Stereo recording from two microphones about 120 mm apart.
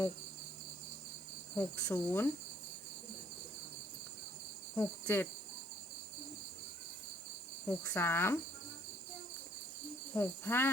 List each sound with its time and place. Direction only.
1.5 s cricket: 25° left (ahead or behind)
4.7 s cricket: 20° left (ahead or behind)
7.7 s cricket: 20° left (ahead or behind)
10.2 s cricket: 20° left (ahead or behind)